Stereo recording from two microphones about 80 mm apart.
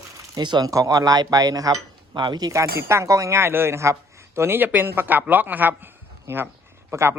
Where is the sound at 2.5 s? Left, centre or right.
Right.